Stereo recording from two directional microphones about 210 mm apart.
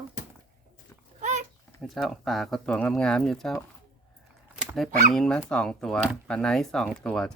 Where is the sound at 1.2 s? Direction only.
35° right (ahead or behind).